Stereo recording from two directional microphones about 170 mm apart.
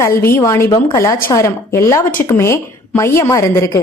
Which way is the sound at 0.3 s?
15° left (ahead or behind).